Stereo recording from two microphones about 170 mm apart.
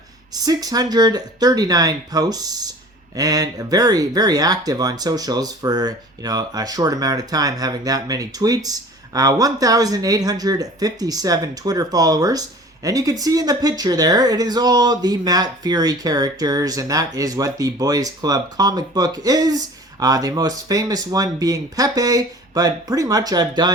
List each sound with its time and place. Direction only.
0.3 s speech: 25° right (ahead or behind)